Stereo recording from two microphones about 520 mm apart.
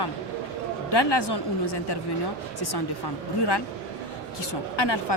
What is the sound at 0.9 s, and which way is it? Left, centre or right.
Speech, left.